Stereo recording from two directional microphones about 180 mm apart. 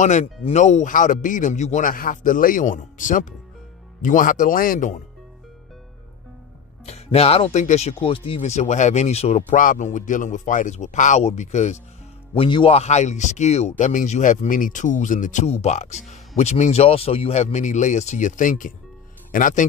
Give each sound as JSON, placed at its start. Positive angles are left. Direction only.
{"t": 0.0, "sound": "speech", "side_deg": 40}
{"t": 6.9, "sound": "speech", "side_deg": 35}
{"t": 12.4, "sound": "speech", "side_deg": 30}